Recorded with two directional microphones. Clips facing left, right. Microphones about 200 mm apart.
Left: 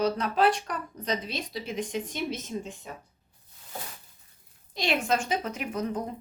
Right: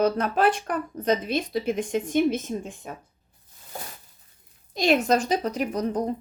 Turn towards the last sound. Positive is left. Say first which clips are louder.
# right 5 dB
turn(degrees=-35)  # may be behind; listen again after turning